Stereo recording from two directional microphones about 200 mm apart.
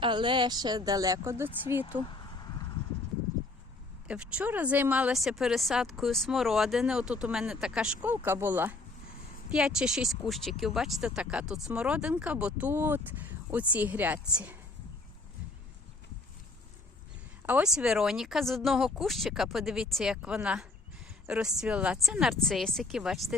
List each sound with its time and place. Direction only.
0.0 s speech: 25° right (ahead or behind)
2.0 s a sound: 20° left (ahead or behind)
4.1 s speech: 5° right (ahead or behind)
17.4 s speech: 5° right (ahead or behind)